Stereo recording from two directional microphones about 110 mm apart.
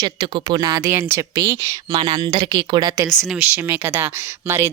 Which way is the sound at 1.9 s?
45° right (ahead or behind).